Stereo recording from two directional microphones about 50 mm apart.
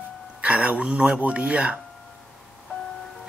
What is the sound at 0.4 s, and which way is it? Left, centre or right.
Speech, right.